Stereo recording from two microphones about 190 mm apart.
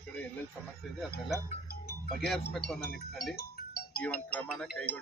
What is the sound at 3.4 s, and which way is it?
Music, 55° left (ahead or behind).